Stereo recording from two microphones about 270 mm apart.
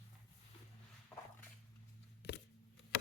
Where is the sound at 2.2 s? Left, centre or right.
Left.